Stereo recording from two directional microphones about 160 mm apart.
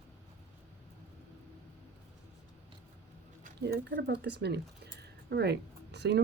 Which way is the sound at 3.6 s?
90° right.